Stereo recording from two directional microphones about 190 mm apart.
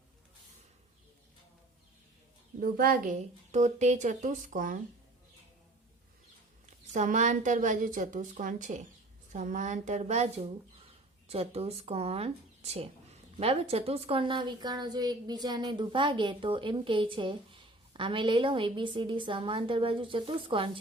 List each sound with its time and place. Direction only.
2.6 s a woman's voice: 50° right (ahead or behind)
6.7 s a woman's voice: 40° right (ahead or behind)